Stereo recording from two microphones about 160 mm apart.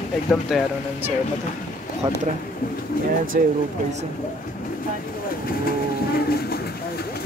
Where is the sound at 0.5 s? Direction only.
5° right (ahead or behind).